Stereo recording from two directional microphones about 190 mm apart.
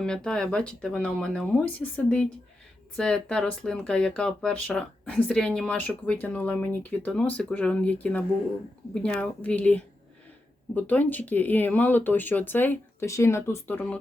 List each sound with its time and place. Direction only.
0.0 s speech: 5° left (ahead or behind)